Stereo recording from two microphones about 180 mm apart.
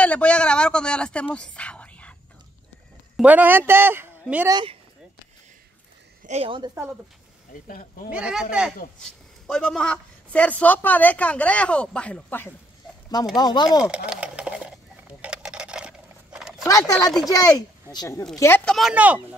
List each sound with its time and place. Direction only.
0.0 s speech: 5° left (ahead or behind)
3.2 s a woman's voice: 10° right (ahead or behind)
6.2 s speech: 35° right (ahead or behind)
7.6 s speech: 50° left (ahead or behind)
8.1 s a woman's voice: 5° right (ahead or behind)
13.4 s speech: 25° left (ahead or behind)
13.8 s sewing machine: 5° right (ahead or behind)
16.6 s a woman's voice: 20° left (ahead or behind)
18.7 s speech: centre (ahead or behind)